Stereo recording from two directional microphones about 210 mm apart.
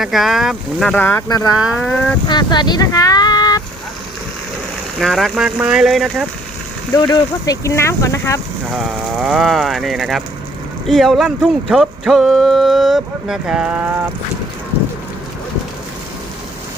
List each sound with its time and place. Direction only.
0.0 s speech: centre (ahead or behind); by 1.5 s 15° left (ahead or behind)
1.5 s speech: 5° right (ahead or behind)
2.2 s speech: 20° left (ahead or behind)
4.9 s speech: centre (ahead or behind)
6.9 s speech: 20° left (ahead or behind)
8.7 s speech: centre (ahead or behind)